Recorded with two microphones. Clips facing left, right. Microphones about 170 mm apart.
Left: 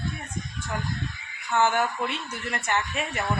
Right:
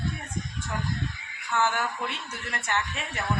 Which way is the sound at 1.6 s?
20° left (ahead or behind).